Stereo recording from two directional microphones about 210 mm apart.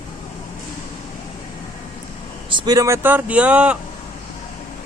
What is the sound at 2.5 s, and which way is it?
Speech, 20° right (ahead or behind).